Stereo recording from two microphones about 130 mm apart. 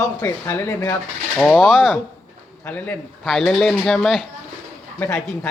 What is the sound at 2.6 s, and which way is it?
Speech, 15° left (ahead or behind).